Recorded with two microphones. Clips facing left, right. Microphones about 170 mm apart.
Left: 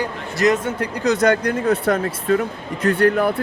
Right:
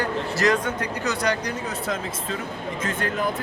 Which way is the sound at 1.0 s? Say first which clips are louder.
Left 9 dB; 45° left (ahead or behind).